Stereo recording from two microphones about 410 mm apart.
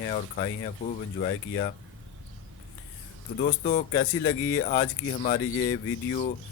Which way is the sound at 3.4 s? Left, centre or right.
Centre.